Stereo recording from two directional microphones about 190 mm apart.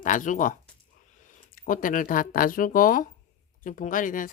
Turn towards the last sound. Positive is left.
turn(degrees=45)  # may be behind; listen again after turning